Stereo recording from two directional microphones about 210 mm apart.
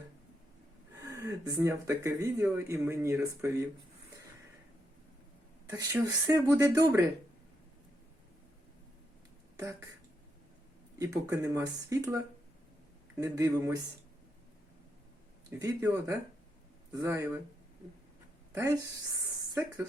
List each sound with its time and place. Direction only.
1.0 s speech: 15° right (ahead or behind)
5.6 s speech: 15° right (ahead or behind)
10.9 s speech: 15° right (ahead or behind)
15.4 s speech: 15° right (ahead or behind)